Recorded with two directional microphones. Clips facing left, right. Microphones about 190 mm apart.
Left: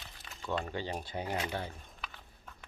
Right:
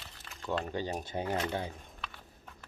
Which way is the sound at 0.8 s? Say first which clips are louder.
Right 2 dB; 45° right (ahead or behind).